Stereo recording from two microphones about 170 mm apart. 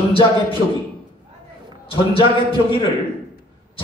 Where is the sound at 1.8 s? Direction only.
30° left (ahead or behind).